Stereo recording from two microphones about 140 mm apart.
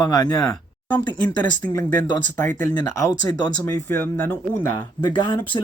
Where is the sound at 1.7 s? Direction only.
20° left (ahead or behind).